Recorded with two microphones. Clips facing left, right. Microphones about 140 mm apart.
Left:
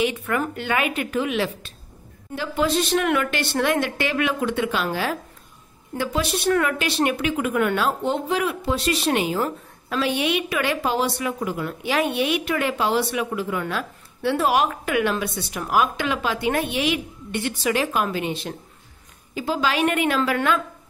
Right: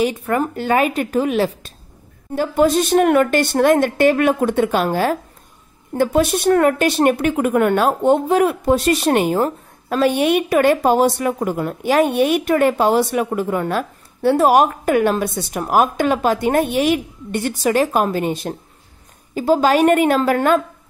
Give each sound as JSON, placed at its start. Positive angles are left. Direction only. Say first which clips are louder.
{"t": 0.0, "sound": "a woman's voice", "louder": "right 5 dB", "side_deg": -35}